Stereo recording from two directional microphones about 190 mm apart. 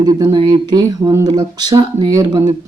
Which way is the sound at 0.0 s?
20° right (ahead or behind).